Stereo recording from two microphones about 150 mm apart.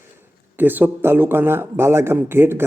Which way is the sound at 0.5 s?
15° right (ahead or behind).